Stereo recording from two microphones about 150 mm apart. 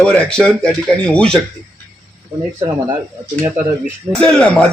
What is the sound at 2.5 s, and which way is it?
Speech, 25° right (ahead or behind).